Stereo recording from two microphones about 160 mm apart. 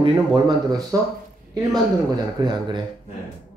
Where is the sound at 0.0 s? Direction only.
30° right (ahead or behind).